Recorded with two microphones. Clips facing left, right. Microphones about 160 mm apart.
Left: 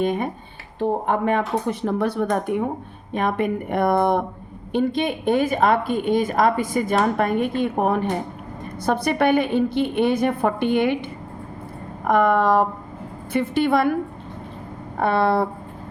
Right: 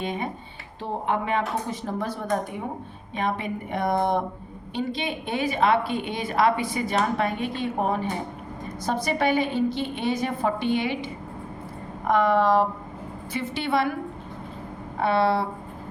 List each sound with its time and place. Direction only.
0.0 s a woman's voice: 50° left (ahead or behind)
3.1 s a woman's voice: 55° left (ahead or behind)
14.9 s a woman's voice: 50° left (ahead or behind)